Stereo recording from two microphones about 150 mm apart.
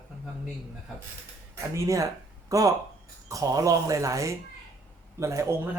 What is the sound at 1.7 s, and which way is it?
Speech, 20° right (ahead or behind).